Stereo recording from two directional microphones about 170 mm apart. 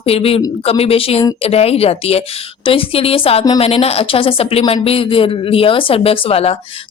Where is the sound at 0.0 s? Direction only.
35° left (ahead or behind).